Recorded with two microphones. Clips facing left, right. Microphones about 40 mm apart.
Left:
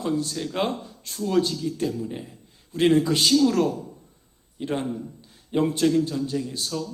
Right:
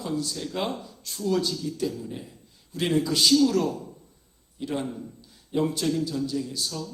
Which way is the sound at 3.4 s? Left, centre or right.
Left.